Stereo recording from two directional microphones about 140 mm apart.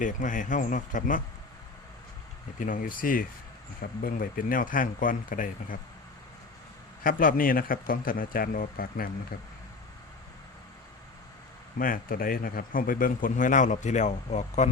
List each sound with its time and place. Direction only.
0.0 s a man's voice: 65° left (ahead or behind)
2.6 s a man's voice: 70° left (ahead or behind)
7.0 s a man's voice: 90° left
11.8 s a man's voice: 85° left; by 14.7 s 55° left (ahead or behind)